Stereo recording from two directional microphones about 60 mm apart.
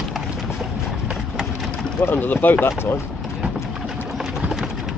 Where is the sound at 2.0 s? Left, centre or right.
Left.